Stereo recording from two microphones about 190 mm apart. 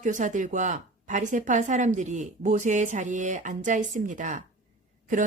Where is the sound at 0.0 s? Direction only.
40° right (ahead or behind).